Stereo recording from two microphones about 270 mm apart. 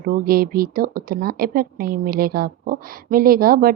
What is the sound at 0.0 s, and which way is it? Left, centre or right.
Speech, right.